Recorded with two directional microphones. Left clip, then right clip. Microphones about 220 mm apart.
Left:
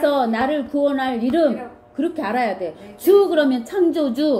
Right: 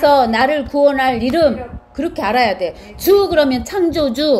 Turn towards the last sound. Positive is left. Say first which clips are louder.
# right 4 dB
turn(degrees=-20)  # may be behind; listen again after turning